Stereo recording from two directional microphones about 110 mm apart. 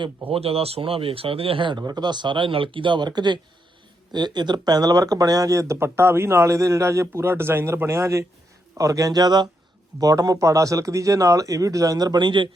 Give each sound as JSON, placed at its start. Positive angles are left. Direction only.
{"t": 0.0, "sound": "speech", "side_deg": -60}
{"t": 1.8, "sound": "speech", "side_deg": -40}